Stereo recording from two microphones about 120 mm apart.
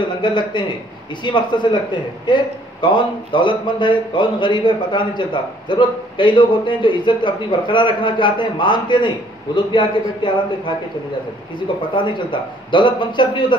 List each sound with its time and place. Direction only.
0.0 s a man's voice: 40° left (ahead or behind)